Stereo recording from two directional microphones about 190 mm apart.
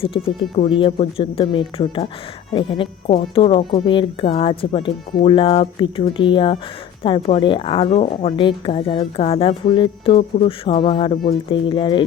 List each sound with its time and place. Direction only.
0.6 s speech: 30° left (ahead or behind)